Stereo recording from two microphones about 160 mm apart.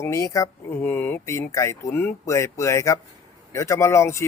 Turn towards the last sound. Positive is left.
turn(degrees=15)  # may be behind; listen again after turning